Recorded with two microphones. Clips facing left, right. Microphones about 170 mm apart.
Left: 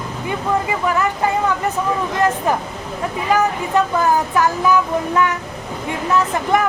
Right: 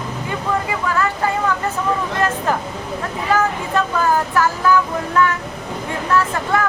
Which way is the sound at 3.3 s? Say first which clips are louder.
Left 2 dB; 15° left (ahead or behind).